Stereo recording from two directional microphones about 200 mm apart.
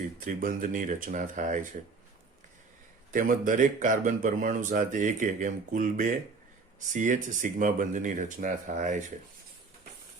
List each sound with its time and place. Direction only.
0.2 s speech: 45° right (ahead or behind)
3.1 s speech: 40° right (ahead or behind)